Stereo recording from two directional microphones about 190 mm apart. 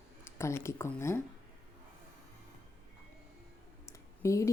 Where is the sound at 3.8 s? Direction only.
15° left (ahead or behind).